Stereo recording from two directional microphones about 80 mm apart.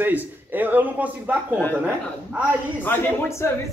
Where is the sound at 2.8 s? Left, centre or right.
Left.